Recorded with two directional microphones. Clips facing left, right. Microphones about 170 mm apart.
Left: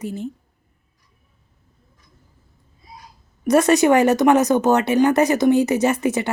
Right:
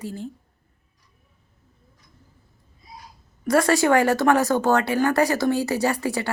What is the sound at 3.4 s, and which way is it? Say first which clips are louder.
Speech: left 4 dB; 20° left (ahead or behind).